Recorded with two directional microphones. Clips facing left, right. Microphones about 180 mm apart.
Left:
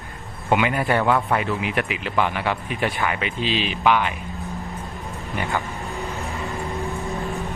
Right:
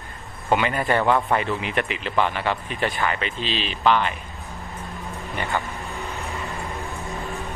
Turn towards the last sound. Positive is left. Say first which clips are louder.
# left 4 dB
turn(degrees=0)  # may be behind; listen again after turning